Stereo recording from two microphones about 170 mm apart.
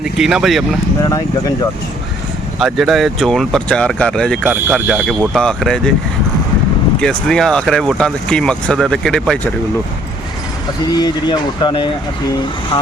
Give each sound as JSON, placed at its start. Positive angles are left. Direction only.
{"t": 0.0, "sound": "speech", "side_deg": -5}
{"t": 2.6, "sound": "speech", "side_deg": 0}
{"t": 4.4, "sound": "speech", "side_deg": -10}
{"t": 7.0, "sound": "speech", "side_deg": 5}
{"t": 10.9, "sound": "speech", "side_deg": 25}